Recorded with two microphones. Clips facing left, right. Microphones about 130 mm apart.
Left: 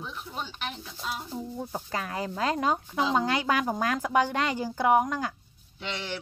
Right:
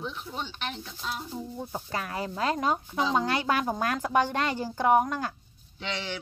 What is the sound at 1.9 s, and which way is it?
Speech, 30° right (ahead or behind).